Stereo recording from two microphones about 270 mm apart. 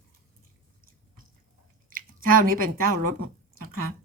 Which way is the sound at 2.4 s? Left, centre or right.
Right.